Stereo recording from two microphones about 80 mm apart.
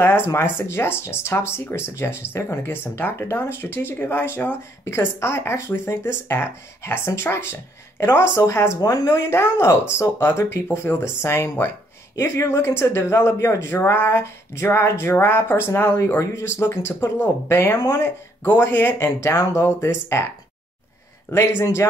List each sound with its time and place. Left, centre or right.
0.0 s speech: left
21.3 s speech: left